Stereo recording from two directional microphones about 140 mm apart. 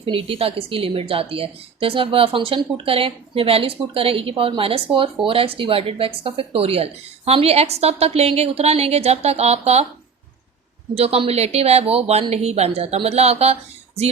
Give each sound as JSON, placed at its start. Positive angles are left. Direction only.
{"t": 0.0, "sound": "a woman's voice", "side_deg": -40}
{"t": 10.9, "sound": "speech", "side_deg": -45}